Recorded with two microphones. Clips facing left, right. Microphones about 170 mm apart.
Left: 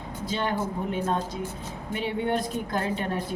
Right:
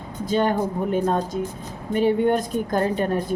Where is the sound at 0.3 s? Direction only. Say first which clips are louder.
Right 7 dB; 45° right (ahead or behind).